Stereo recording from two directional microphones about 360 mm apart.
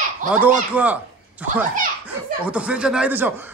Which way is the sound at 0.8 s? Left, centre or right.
Centre.